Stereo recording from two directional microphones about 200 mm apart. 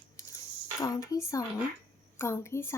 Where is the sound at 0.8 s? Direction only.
15° left (ahead or behind).